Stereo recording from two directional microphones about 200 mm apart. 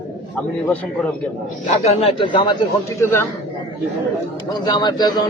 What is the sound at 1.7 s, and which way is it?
Speech, 35° left (ahead or behind).